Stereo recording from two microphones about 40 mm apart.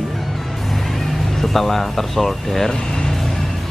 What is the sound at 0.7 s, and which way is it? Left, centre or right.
Speech, centre.